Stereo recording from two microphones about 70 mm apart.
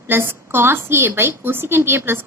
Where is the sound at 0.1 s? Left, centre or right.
Right.